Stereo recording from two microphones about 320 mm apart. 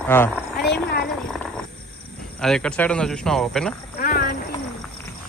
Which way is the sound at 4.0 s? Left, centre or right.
Left.